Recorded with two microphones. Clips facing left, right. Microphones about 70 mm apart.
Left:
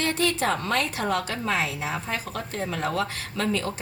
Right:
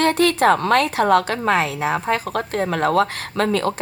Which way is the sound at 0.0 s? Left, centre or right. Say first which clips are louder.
Right 9 dB; right.